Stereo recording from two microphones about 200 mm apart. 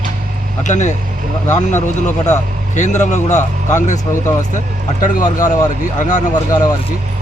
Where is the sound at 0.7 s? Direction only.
35° left (ahead or behind).